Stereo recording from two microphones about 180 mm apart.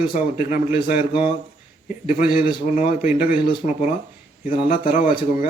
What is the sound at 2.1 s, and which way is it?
Speech, 50° left (ahead or behind).